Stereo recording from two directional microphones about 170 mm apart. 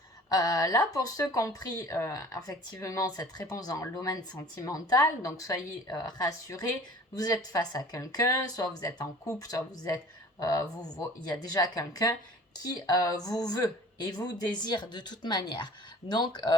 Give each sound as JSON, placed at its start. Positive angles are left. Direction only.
{"t": 0.3, "sound": "speech", "side_deg": 20}
{"t": 11.3, "sound": "speech", "side_deg": 25}